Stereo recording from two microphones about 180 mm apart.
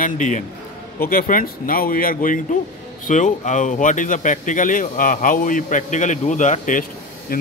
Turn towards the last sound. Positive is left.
turn(degrees=45)  # may be behind; listen again after turning